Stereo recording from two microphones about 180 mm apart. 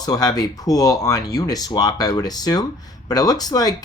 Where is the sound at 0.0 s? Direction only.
20° left (ahead or behind).